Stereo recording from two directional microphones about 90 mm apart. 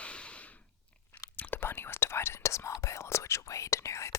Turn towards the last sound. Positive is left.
turn(degrees=35)  # may be behind; listen again after turning